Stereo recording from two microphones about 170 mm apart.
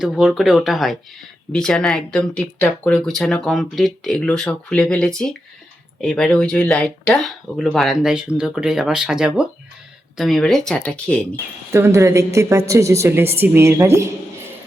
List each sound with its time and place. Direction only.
0.0 s speech: 5° right (ahead or behind)
11.7 s a woman's voice: 15° right (ahead or behind)